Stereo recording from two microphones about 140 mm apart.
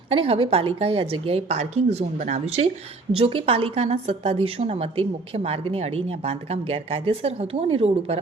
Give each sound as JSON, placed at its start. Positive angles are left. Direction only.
{"t": 0.1, "sound": "a woman's voice", "side_deg": -40}